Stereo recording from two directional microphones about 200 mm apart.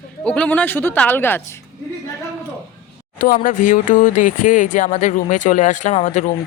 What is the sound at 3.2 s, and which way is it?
Speech, 45° left (ahead or behind).